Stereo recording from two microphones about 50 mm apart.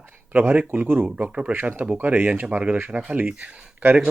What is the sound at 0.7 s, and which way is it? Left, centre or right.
Speech, right.